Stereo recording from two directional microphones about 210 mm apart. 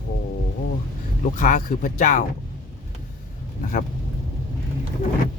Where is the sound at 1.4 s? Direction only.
40° left (ahead or behind).